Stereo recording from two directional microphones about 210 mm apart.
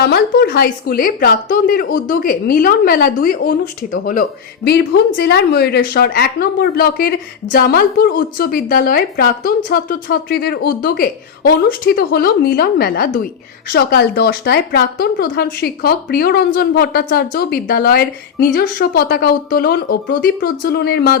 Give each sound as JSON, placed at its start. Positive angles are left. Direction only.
{"t": 0.0, "sound": "speech", "side_deg": 50}